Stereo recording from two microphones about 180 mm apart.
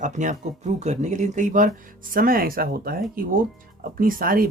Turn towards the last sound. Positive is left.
turn(degrees=-50)  # may be behind; listen again after turning